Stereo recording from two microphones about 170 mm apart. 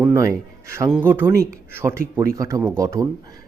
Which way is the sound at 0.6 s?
15° right (ahead or behind).